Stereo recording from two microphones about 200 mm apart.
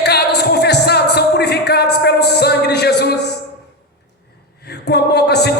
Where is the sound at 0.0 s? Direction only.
55° left (ahead or behind).